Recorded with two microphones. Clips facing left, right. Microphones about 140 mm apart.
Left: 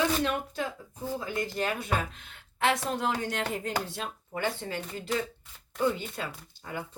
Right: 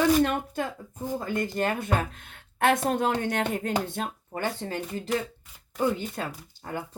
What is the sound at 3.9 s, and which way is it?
Speech, 45° right (ahead or behind).